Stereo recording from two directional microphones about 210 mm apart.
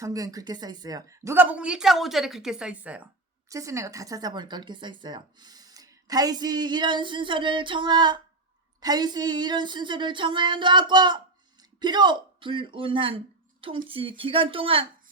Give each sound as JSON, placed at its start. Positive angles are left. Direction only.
{"t": 0.0, "sound": "a woman's voice", "side_deg": -15}